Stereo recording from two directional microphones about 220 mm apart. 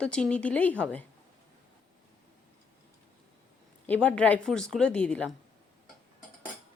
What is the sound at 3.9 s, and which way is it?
Speech, 5° left (ahead or behind).